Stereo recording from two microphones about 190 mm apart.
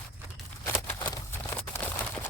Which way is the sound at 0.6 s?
15° left (ahead or behind).